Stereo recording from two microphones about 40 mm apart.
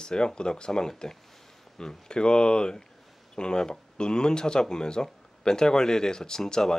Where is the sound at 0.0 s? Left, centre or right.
Centre.